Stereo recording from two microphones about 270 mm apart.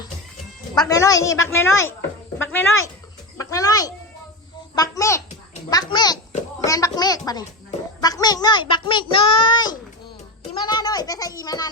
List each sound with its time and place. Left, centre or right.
0.8 s a child's voice: centre